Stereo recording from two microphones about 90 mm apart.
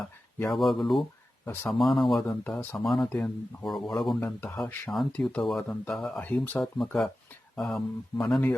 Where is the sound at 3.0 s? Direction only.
15° left (ahead or behind).